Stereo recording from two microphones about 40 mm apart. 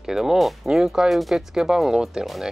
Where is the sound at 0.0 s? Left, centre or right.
Centre.